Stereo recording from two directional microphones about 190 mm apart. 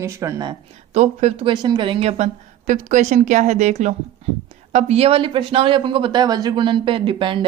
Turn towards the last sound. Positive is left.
turn(degrees=-25)  # may be behind; listen again after turning